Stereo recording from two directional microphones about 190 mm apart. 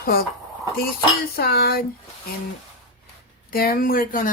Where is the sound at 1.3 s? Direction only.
55° left (ahead or behind).